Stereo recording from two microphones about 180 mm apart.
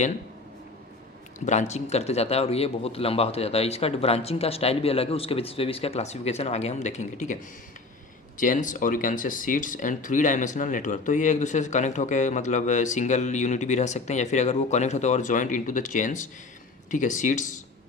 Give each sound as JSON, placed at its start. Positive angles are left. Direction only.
{"t": 1.5, "sound": "speech", "side_deg": 40}
{"t": 8.4, "sound": "speech", "side_deg": 45}